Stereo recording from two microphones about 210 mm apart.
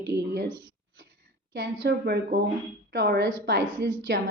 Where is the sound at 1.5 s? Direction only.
55° right (ahead or behind).